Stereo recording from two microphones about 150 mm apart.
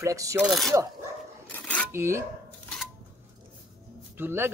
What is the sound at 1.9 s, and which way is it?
Speech, 15° right (ahead or behind).